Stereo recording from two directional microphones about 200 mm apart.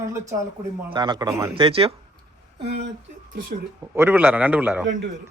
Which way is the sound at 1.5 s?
30° right (ahead or behind).